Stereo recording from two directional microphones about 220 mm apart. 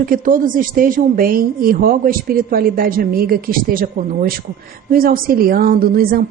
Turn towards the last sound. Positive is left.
turn(degrees=-40)  # may be behind; listen again after turning